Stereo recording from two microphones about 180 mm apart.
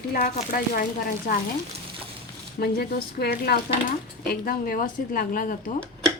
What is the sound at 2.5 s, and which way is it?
Speech, 60° left (ahead or behind).